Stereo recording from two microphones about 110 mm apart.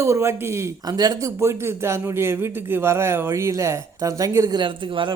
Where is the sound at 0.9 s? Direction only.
35° right (ahead or behind).